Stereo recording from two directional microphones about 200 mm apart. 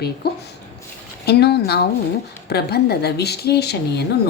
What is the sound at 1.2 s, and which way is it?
A woman's voice, 55° left (ahead or behind).